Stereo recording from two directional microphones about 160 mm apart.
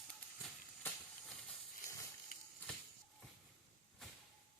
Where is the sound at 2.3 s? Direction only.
60° left (ahead or behind).